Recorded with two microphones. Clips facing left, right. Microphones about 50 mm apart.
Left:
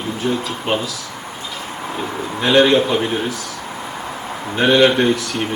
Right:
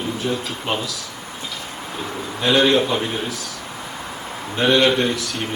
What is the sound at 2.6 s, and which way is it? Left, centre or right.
Speech, centre.